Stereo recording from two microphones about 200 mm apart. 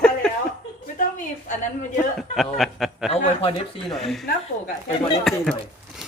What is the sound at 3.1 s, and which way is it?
Speech, 30° left (ahead or behind).